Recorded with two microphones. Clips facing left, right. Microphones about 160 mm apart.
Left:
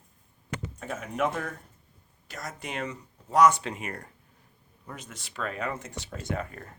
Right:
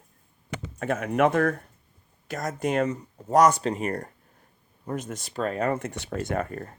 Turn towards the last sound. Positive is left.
turn(degrees=-45)  # may be behind; listen again after turning